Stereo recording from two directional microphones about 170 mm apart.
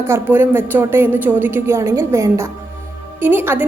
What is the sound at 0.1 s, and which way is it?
A woman's voice, 10° right (ahead or behind).